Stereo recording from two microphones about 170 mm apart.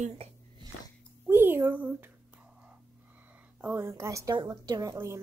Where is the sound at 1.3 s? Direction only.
15° right (ahead or behind).